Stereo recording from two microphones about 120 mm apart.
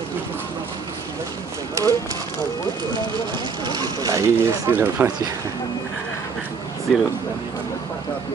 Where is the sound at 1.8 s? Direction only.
25° right (ahead or behind).